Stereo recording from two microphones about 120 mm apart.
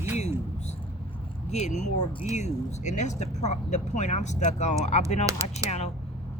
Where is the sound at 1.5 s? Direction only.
75° left (ahead or behind).